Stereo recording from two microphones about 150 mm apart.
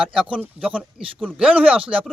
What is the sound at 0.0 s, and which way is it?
Speech, 5° right (ahead or behind).